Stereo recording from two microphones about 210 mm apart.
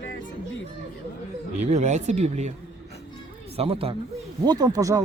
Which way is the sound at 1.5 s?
35° right (ahead or behind).